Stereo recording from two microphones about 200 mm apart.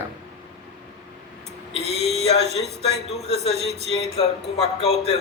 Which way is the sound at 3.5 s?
Centre (ahead or behind).